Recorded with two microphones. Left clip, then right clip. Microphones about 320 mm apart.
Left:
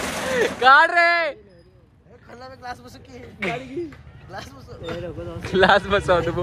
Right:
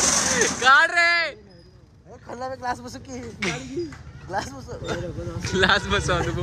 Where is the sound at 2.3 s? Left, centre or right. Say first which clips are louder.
Right 7 dB; right.